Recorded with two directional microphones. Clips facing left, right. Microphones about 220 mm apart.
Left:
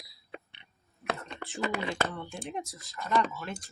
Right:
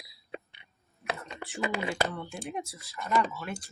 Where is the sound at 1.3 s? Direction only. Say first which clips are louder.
Even; 15° right (ahead or behind).